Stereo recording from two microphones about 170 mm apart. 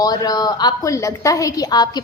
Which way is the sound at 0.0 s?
20° left (ahead or behind).